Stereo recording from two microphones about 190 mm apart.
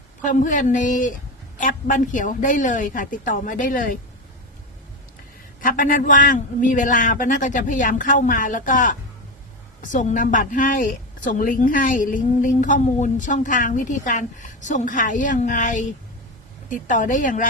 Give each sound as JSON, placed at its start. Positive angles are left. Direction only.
{"t": 0.2, "sound": "a woman's voice", "side_deg": 40}
{"t": 5.5, "sound": "a woman's voice", "side_deg": 45}